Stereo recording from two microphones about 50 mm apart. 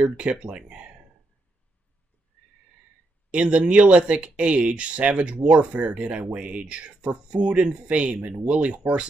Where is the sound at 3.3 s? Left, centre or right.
Right.